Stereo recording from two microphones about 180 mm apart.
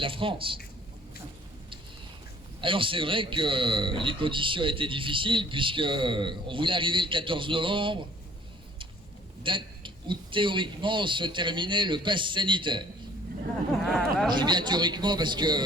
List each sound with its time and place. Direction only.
0.0 s a man's voice: 30° right (ahead or behind)
2.6 s a man's voice: 30° right (ahead or behind)
9.4 s a man's voice: 30° right (ahead or behind)
13.8 s speech: centre (ahead or behind)
14.3 s a man's voice: 25° right (ahead or behind)